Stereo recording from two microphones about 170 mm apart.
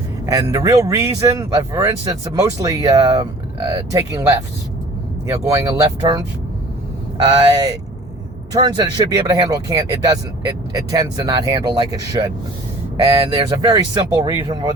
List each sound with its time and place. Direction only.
0.3 s speech: 20° right (ahead or behind)
7.3 s speech: 30° right (ahead or behind)
13.3 s speech: 25° right (ahead or behind)